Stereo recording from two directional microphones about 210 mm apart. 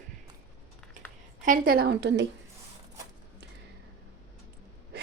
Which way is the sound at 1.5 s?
45° right (ahead or behind).